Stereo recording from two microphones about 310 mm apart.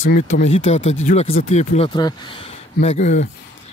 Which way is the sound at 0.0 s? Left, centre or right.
Left.